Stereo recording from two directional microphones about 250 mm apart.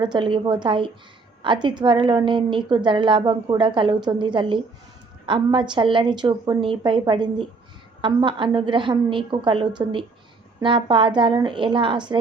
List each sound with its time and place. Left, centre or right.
0.0 s a woman's voice: centre